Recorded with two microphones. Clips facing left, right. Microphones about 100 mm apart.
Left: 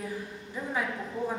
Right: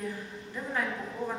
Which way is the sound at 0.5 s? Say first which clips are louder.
Left 1 dB; 10° left (ahead or behind).